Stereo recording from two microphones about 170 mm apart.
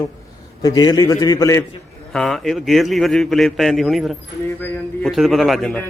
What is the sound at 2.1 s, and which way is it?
A man's voice, centre (ahead or behind).